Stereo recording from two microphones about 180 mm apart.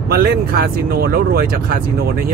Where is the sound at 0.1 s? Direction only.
55° right (ahead or behind).